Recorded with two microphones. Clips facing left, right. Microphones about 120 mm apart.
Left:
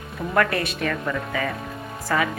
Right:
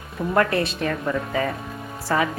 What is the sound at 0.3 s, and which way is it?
Speech, 30° right (ahead or behind).